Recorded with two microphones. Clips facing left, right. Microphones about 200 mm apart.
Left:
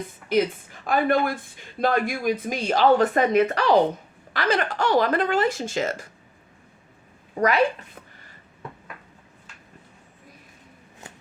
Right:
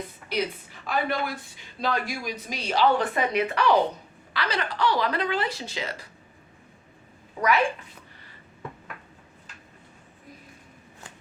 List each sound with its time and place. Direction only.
0.3 s speech: 50° left (ahead or behind)
7.3 s speech: 45° left (ahead or behind)